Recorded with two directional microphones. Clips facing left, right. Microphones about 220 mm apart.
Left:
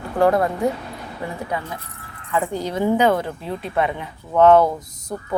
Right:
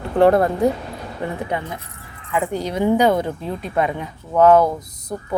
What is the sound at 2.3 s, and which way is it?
Speech, 15° right (ahead or behind).